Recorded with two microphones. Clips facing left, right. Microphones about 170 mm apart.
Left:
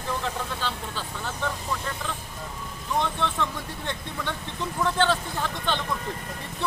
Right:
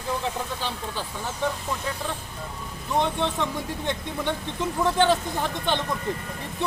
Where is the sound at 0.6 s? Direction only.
15° right (ahead or behind).